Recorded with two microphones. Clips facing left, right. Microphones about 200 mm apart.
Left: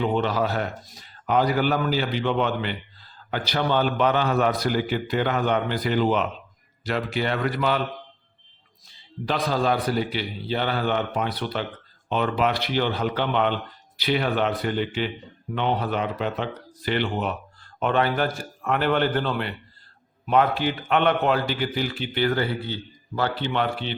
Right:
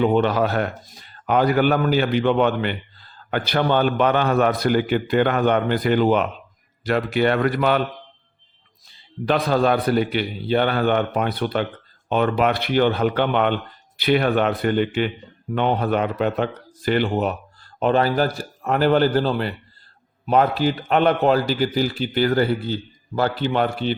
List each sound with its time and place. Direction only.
0.0 s a man's voice: 60° right (ahead or behind)
9.2 s a man's voice: 60° right (ahead or behind); by 23.9 s 40° right (ahead or behind)